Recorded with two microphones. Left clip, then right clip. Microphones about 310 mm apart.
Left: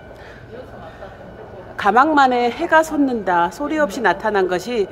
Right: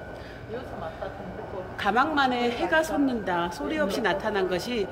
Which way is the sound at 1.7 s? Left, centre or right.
Centre.